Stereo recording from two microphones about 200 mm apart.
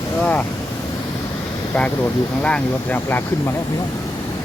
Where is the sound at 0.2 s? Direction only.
5° left (ahead or behind).